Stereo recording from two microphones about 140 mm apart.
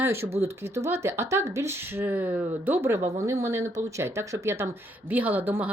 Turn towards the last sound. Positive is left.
turn(degrees=-15)  # may be behind; listen again after turning